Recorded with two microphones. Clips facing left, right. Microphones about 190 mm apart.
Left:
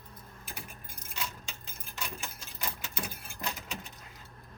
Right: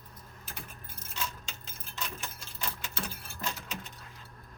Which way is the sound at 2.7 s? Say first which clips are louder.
Even; 15° left (ahead or behind).